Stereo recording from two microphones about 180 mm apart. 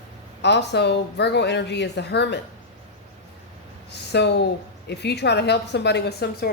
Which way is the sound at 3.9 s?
70° left (ahead or behind).